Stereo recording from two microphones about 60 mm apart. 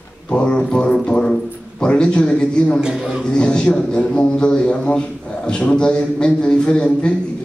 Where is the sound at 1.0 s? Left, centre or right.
Centre.